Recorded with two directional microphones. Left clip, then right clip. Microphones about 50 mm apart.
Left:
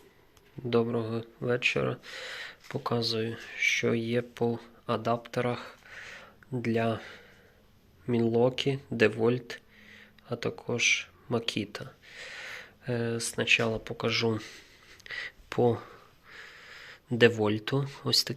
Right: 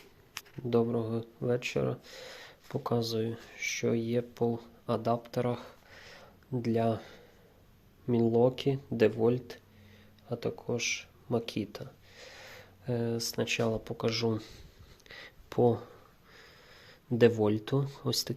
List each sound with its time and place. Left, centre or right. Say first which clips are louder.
0.9 s speech: left 1 dB; right
1.8 s speech: left 2 dB; right
3.6 s speech: left 5 dB; centre; by 4.7 s right
4.9 s a sound: left 1 dB; right
6.7 s speech: left 1 dB; right; by 12.1 s centre
12.1 s a sound: left 12 dB; right
12.5 s speech: left 1 dB; right
14.0 s speech: left 4 dB; right
14.3 s speech: left 2 dB; centre
15.4 s a sound: even; right
17.2 s speech: left 2 dB; right